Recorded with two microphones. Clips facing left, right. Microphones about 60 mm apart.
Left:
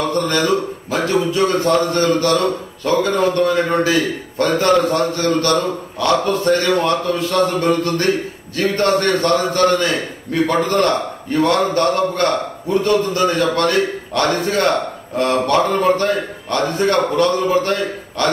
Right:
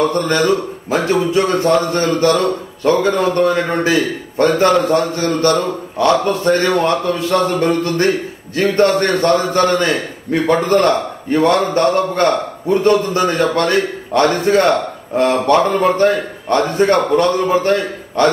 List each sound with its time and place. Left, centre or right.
0.0 s a man's voice: right
13.5 s a man's voice: right